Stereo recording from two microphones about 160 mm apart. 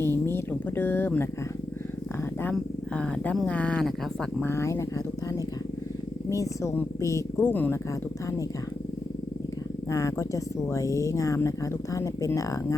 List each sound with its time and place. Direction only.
0.0 s a sound: 15° left (ahead or behind)
2.4 s speech: 10° left (ahead or behind)
6.2 s speech: 20° left (ahead or behind)
9.9 s speech: 20° left (ahead or behind)